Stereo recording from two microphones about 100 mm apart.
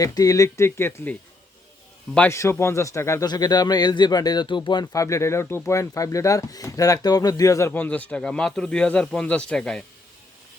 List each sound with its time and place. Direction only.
0.0 s speech: 35° left (ahead or behind)
2.3 s speech: 25° left (ahead or behind)
3.2 s a man's voice: 40° left (ahead or behind)
4.9 s speech: 30° left (ahead or behind)
7.7 s speech: 15° left (ahead or behind)